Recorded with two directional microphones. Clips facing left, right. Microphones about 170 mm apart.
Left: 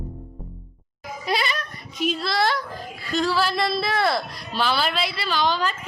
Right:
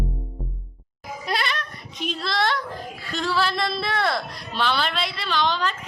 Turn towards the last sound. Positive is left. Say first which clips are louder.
# left 1 dB
turn(degrees=5)  # may be behind; listen again after turning